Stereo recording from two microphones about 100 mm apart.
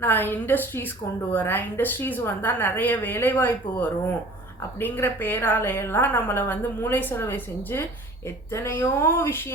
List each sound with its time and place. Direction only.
0.0 s a woman's voice: 20° left (ahead or behind)